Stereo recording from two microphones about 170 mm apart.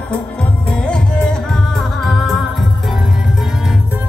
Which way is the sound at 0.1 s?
5° left (ahead or behind).